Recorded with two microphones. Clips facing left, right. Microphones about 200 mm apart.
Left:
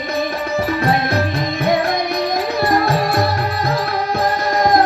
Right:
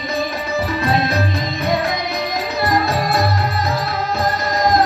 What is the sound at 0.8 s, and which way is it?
Music, 55° left (ahead or behind).